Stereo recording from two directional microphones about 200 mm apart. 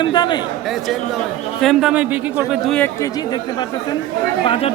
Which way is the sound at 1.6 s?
Centre (ahead or behind).